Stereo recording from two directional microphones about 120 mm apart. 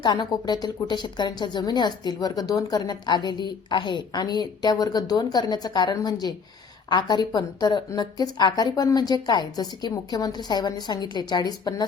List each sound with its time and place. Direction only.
0.0 s speech: 35° left (ahead or behind)